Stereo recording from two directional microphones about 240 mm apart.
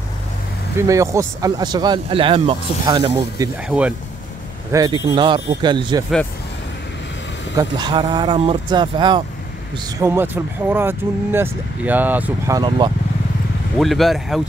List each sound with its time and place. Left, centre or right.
0.7 s speech: centre
3.6 s speech: centre
4.7 s speech: centre
7.5 s speech: centre
13.7 s speech: centre